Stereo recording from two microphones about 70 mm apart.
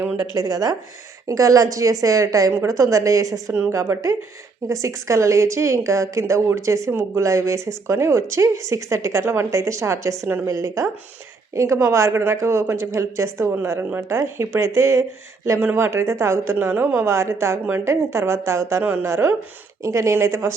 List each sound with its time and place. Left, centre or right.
0.3 s a woman's voice: right
3.5 s a woman's voice: right
4.7 s a woman's voice: right